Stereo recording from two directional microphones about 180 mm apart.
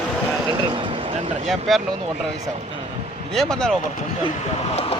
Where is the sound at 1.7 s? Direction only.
Centre (ahead or behind).